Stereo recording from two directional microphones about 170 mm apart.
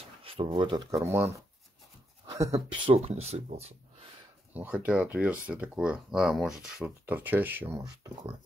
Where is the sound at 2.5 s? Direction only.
30° right (ahead or behind).